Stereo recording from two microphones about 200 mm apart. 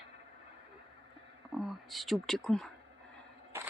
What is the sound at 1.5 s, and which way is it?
Speech, centre (ahead or behind).